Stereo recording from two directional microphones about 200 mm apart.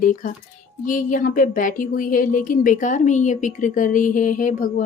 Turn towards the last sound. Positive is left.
turn(degrees=40)  # may be behind; listen again after turning